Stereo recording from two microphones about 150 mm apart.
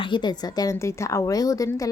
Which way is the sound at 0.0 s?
30° left (ahead or behind).